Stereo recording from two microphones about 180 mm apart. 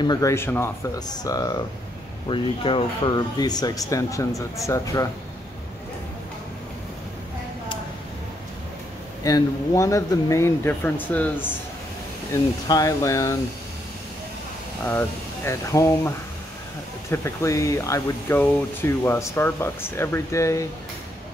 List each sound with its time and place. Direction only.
0.0 s speech: 20° left (ahead or behind)
9.2 s speech: 20° left (ahead or behind)
12.6 s speech: 20° left (ahead or behind)
14.9 s speech: 15° left (ahead or behind)
17.1 s speech: 15° left (ahead or behind)